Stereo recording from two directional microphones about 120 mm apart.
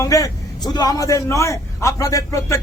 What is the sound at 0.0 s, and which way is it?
A man's voice, 30° left (ahead or behind).